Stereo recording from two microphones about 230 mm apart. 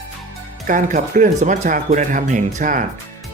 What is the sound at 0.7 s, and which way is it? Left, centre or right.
Speech, right.